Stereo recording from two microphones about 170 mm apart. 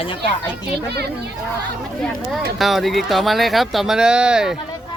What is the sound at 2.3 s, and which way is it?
Speech, centre (ahead or behind).